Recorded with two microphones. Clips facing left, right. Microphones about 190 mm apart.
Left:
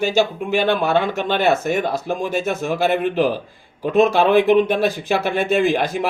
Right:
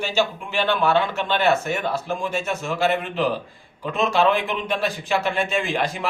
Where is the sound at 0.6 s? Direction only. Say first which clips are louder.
Left 2 dB; 50° left (ahead or behind).